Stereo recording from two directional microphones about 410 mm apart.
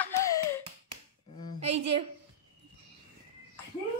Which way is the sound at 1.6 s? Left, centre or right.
Centre.